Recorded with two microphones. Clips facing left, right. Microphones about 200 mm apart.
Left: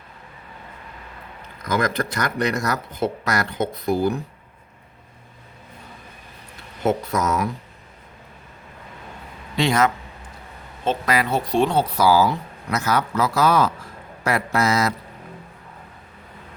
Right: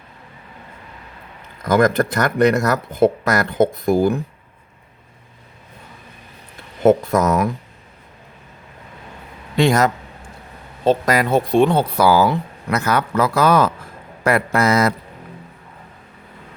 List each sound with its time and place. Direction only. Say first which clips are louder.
1.6 s speech: right 7 dB; 50° right (ahead or behind)
6.8 s speech: right 7 dB; 50° right (ahead or behind)
9.6 s speech: right 4 dB; 45° right (ahead or behind)